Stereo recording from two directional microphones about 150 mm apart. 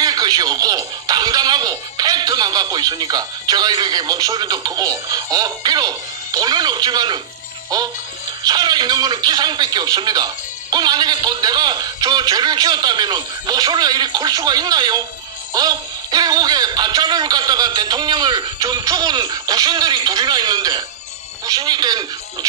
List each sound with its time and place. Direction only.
0.0 s speech: 25° right (ahead or behind)